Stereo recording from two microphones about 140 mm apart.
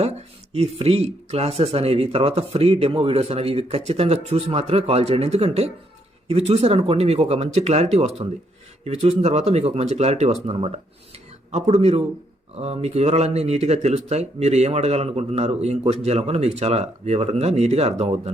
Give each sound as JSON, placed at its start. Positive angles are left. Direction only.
{"t": 0.5, "sound": "speech", "side_deg": -45}